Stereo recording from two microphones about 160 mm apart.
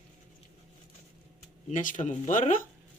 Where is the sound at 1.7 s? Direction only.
55° left (ahead or behind).